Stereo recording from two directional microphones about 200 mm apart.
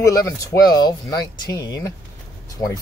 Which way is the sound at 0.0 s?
15° left (ahead or behind).